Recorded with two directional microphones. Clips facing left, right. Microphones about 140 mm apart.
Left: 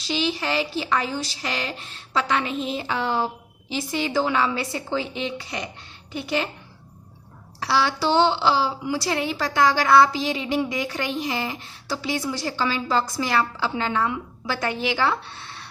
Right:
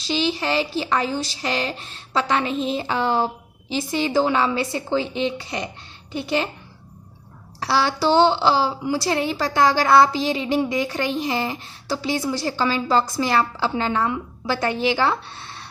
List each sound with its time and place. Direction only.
0.1 s a woman's voice: 30° right (ahead or behind)
7.6 s a woman's voice: 35° right (ahead or behind)